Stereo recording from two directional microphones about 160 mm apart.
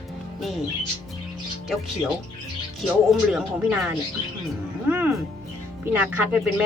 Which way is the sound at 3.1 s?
5° right (ahead or behind).